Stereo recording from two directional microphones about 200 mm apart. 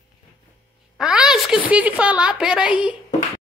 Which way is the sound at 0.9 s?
5° right (ahead or behind).